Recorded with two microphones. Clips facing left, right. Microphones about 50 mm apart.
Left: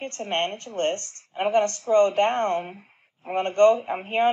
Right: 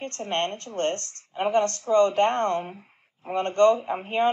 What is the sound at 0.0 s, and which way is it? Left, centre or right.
A woman's voice, left.